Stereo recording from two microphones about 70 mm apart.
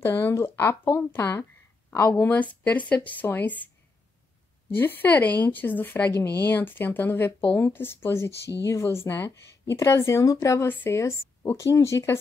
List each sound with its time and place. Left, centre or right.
0.0 s a woman's voice: left
4.7 s a woman's voice: left
10.7 s speech: left
11.0 s speech: left